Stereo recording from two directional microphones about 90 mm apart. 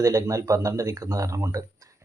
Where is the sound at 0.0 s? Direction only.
40° right (ahead or behind).